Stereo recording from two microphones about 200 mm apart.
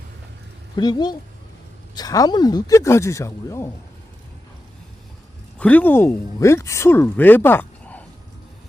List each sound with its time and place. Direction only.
0.8 s speech: 20° left (ahead or behind)
5.5 s speech: 10° left (ahead or behind)